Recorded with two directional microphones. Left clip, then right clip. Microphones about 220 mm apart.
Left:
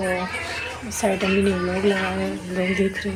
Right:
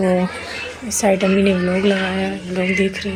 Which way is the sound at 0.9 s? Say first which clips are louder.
Right 6 dB; 20° right (ahead or behind).